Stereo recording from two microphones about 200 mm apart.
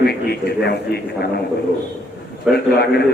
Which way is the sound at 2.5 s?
50° left (ahead or behind).